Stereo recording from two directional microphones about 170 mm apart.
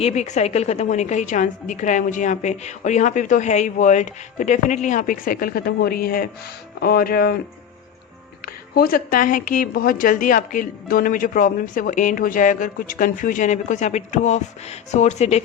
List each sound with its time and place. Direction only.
0.0 s a woman's voice: 40° left (ahead or behind); by 7.3 s 60° left (ahead or behind)
8.4 s a woman's voice: 60° left (ahead or behind); by 15.4 s 40° left (ahead or behind)